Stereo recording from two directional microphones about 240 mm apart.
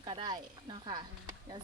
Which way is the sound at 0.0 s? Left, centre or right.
Centre.